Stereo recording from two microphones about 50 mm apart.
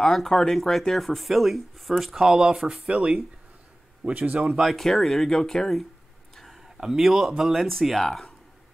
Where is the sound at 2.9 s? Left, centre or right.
Right.